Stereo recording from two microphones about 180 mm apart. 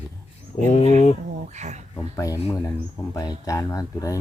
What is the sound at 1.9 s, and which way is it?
Speech, 20° left (ahead or behind).